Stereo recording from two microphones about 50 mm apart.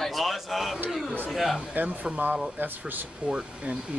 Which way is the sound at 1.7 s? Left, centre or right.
Right.